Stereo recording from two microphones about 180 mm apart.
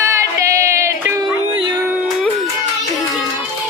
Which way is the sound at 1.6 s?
10° right (ahead or behind).